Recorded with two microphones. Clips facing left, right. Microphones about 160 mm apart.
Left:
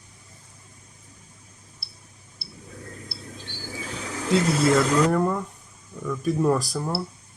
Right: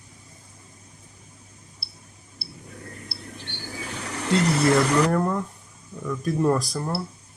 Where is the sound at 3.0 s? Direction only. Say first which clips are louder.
Even; 70° right (ahead or behind).